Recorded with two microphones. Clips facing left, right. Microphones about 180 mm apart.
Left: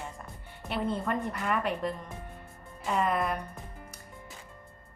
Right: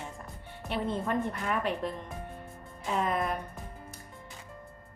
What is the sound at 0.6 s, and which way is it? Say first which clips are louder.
A woman's voice: left 1 dB; centre (ahead or behind).